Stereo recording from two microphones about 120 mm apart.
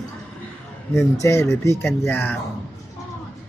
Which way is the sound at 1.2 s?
25° left (ahead or behind).